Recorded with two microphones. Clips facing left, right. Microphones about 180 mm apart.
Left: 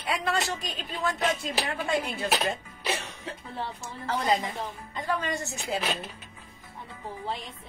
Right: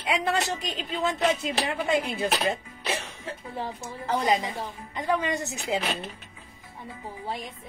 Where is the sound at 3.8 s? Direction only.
15° right (ahead or behind).